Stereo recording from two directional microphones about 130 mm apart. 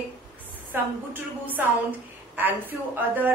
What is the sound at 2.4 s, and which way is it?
Speech, 15° right (ahead or behind).